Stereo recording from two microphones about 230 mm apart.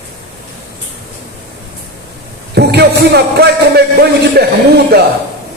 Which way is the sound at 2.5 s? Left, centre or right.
Right.